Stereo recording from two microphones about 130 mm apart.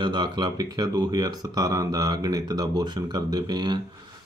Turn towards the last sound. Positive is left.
turn(degrees=-30)  # may be behind; listen again after turning